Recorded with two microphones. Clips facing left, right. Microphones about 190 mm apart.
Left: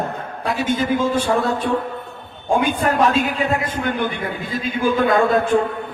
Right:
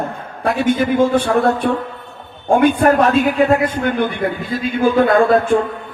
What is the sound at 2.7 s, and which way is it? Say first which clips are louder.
Speech: right 5 dB; 55° right (ahead or behind).